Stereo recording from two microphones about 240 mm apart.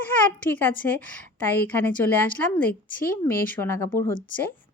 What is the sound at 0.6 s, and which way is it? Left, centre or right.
Speech, centre.